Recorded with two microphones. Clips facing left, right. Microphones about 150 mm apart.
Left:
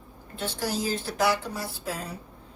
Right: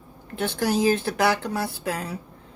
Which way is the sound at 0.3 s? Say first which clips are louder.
Right 7 dB; 65° right (ahead or behind).